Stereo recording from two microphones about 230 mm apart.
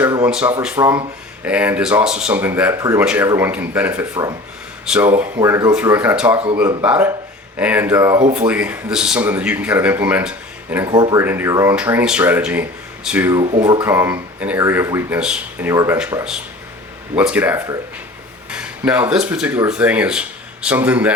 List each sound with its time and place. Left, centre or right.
0.0 s a sound: centre
0.3 s speech: centre
13.4 s speech: centre